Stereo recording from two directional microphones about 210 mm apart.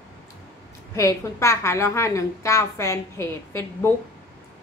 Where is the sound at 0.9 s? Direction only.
15° left (ahead or behind).